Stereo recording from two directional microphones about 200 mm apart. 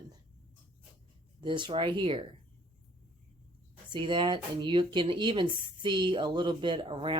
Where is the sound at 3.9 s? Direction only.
25° right (ahead or behind).